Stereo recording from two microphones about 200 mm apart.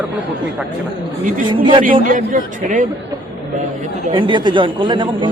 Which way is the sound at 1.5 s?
25° right (ahead or behind).